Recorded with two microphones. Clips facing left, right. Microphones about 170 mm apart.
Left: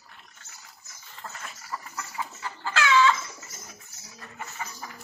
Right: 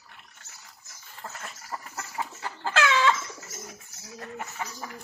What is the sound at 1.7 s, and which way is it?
Chicken, 45° right (ahead or behind).